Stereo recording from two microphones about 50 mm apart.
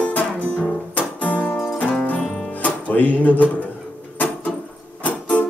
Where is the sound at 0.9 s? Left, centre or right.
Left.